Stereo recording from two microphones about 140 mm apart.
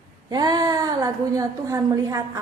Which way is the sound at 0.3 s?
30° right (ahead or behind).